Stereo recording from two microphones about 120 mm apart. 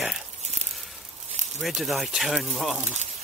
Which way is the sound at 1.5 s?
Centre (ahead or behind).